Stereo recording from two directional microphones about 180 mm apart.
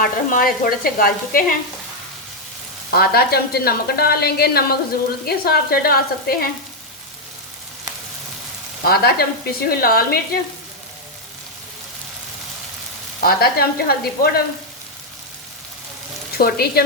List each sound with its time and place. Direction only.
0.0 s sizzle: 50° left (ahead or behind)
2.9 s a woman's voice: 60° left (ahead or behind)
8.8 s a woman's voice: 60° left (ahead or behind)
13.2 s a woman's voice: 60° left (ahead or behind)
16.4 s a woman's voice: 60° left (ahead or behind)